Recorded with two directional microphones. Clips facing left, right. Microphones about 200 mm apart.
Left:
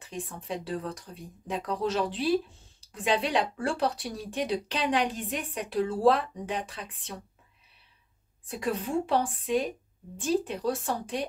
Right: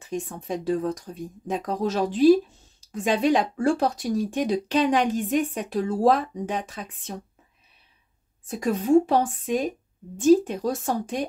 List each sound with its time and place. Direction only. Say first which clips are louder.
0.1 s speech: right 6 dB; 45° right (ahead or behind)
8.5 s speech: right 9 dB; 45° right (ahead or behind)